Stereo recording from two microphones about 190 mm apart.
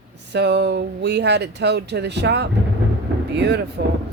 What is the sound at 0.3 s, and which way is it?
Speech, 65° right (ahead or behind).